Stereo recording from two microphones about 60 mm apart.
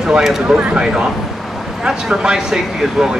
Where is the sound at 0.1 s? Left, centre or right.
Centre.